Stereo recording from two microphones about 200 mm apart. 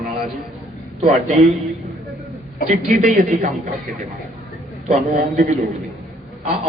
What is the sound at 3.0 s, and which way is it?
Speech, 35° right (ahead or behind).